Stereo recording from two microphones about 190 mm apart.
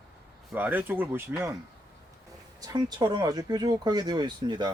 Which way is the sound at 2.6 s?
20° right (ahead or behind).